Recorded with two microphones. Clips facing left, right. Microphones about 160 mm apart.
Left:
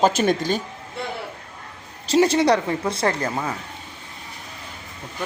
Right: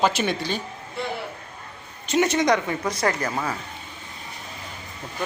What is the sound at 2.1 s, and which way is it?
Speech, 30° left (ahead or behind).